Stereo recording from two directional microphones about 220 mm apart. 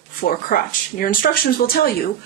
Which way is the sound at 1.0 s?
40° left (ahead or behind).